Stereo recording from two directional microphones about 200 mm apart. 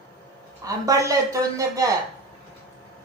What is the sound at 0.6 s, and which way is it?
Speech, 15° right (ahead or behind).